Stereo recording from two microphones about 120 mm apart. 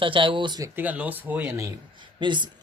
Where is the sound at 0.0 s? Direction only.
45° right (ahead or behind).